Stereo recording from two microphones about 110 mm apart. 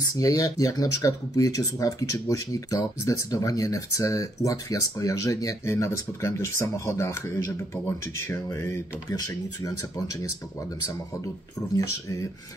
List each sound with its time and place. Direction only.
0.0 s speech: 30° left (ahead or behind)
11.7 s speech: 30° left (ahead or behind)